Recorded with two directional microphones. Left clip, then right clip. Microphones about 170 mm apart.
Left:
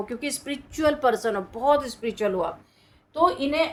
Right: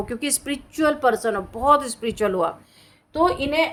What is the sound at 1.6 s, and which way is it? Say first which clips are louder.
Speech: right 4 dB; 35° right (ahead or behind).